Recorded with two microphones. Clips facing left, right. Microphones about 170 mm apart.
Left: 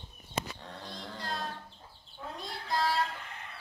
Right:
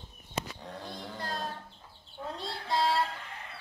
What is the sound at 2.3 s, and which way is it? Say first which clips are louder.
Child singing: right 2 dB; 30° right (ahead or behind).